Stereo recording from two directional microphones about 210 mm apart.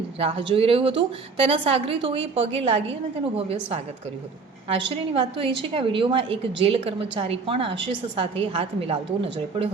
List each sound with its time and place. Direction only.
0.2 s a woman's voice: 25° right (ahead or behind)